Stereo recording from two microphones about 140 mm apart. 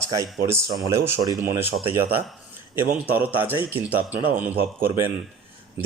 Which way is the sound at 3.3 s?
15° right (ahead or behind).